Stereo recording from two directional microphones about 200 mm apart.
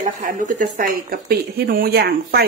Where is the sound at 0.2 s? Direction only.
45° right (ahead or behind).